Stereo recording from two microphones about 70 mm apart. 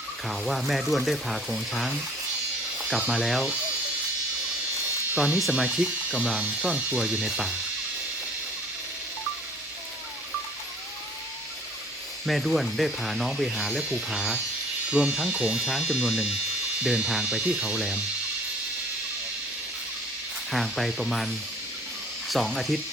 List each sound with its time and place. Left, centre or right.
0.3 s speech: centre
3.1 s speech: centre
5.1 s speech: centre
12.2 s speech: centre
20.5 s speech: centre